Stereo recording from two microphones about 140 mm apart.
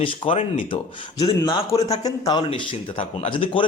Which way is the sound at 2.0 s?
25° left (ahead or behind).